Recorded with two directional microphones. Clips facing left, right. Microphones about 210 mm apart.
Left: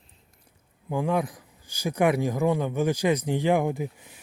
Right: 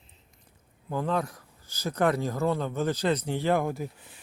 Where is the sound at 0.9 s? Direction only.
15° left (ahead or behind).